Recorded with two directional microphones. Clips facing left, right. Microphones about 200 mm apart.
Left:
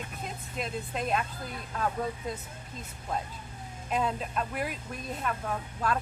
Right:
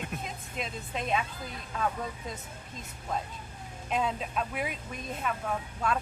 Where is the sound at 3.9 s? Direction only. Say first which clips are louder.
Even; centre (ahead or behind).